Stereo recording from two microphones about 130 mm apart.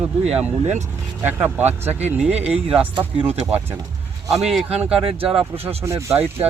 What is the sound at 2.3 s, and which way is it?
Speech, 55° right (ahead or behind).